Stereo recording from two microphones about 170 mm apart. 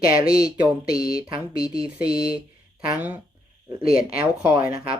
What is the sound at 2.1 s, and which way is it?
Speech, 5° right (ahead or behind).